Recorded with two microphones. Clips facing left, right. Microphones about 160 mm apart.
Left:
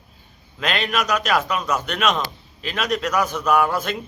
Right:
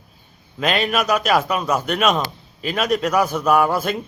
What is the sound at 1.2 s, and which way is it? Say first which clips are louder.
Speech: right 3 dB; 40° right (ahead or behind).